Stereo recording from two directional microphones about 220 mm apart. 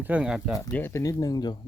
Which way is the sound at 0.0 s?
5° right (ahead or behind).